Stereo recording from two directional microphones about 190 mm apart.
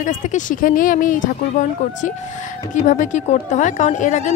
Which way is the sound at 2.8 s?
40° left (ahead or behind).